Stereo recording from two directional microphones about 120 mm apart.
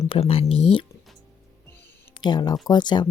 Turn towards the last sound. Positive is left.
turn(degrees=40)  # may be behind; listen again after turning